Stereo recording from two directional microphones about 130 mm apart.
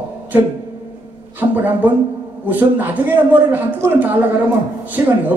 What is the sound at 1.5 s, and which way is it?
A man's voice, 15° right (ahead or behind).